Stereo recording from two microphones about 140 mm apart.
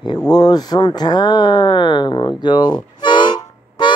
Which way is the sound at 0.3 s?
30° left (ahead or behind).